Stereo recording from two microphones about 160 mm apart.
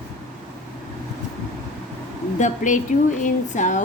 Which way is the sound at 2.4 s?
50° left (ahead or behind).